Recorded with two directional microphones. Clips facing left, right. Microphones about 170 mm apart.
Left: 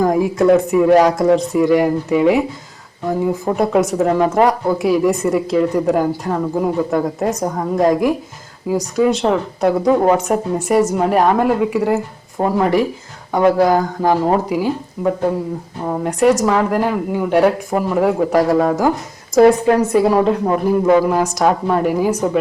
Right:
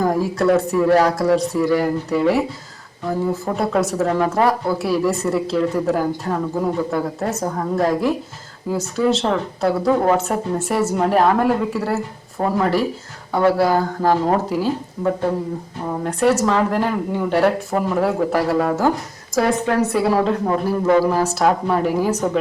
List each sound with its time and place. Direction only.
0.1 s speech: 15° left (ahead or behind)
20.1 s speech: 15° left (ahead or behind)